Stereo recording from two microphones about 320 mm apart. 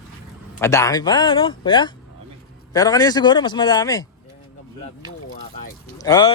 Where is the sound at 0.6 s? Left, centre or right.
Centre.